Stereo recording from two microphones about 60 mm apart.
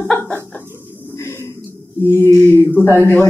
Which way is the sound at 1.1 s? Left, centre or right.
Left.